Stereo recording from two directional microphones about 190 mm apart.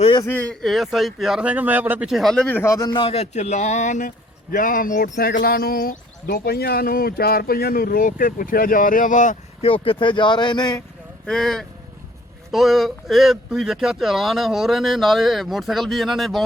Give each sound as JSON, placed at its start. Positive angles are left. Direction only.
{"t": 0.0, "sound": "a sound", "side_deg": 25}
{"t": 0.6, "sound": "speech", "side_deg": 0}
{"t": 11.3, "sound": "speech", "side_deg": 0}